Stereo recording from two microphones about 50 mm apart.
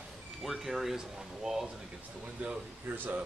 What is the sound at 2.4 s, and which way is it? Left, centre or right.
Speech, right.